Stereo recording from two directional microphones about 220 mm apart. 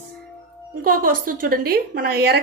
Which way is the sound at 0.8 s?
40° right (ahead or behind).